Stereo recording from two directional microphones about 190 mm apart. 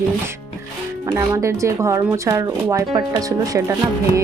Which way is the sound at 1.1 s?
15° right (ahead or behind).